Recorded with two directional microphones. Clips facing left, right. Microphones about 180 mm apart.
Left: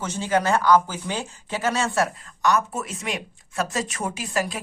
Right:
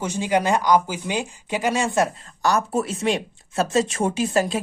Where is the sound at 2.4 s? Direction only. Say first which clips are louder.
Right 2 dB; 30° right (ahead or behind).